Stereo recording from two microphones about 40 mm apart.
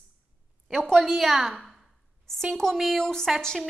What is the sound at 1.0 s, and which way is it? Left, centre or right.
Speech, centre.